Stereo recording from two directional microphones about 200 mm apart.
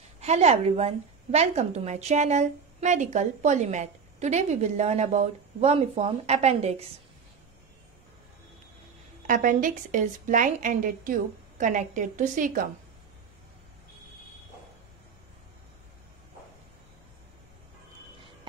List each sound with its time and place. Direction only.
0.2 s a woman's voice: 35° right (ahead or behind)
9.3 s a woman's voice: 40° right (ahead or behind)